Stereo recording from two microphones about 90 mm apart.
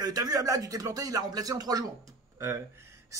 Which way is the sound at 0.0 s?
45° right (ahead or behind).